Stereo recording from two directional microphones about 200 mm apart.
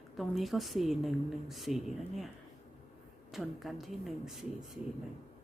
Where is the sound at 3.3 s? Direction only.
Centre (ahead or behind).